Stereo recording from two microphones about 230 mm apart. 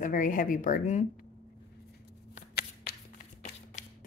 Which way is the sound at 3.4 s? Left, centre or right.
Left.